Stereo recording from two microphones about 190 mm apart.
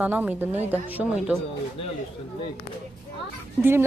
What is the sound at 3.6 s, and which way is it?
Speech, 10° right (ahead or behind).